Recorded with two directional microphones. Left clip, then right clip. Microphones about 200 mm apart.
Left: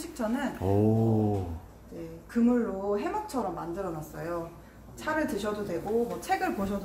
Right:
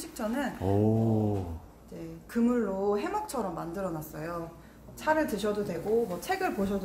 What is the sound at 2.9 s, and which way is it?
Speech, 60° right (ahead or behind).